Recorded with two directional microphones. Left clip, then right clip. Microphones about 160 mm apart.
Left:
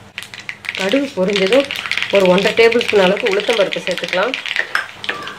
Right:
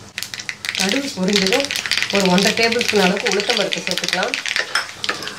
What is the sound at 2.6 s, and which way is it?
Speech, 45° left (ahead or behind).